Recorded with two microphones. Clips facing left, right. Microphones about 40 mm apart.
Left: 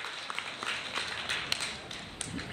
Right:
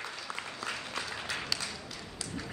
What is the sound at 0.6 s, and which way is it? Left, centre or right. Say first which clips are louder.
Applause: left 2 dB; left.